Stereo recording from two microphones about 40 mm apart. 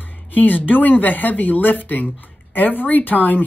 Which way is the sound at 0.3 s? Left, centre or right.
Left.